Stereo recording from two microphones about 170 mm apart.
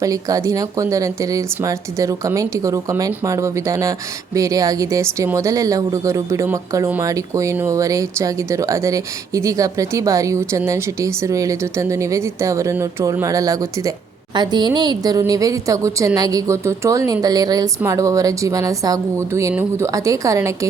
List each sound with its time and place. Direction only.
0.0 s speech: 20° right (ahead or behind)